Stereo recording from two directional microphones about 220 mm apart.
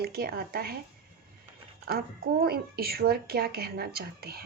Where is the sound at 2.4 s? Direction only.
45° right (ahead or behind).